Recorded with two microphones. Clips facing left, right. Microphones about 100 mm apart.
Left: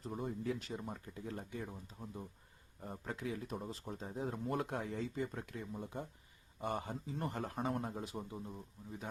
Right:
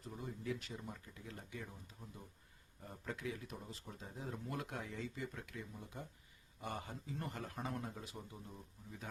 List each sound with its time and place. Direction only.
0.1 s a man's voice: 45° left (ahead or behind); by 9.0 s 25° left (ahead or behind)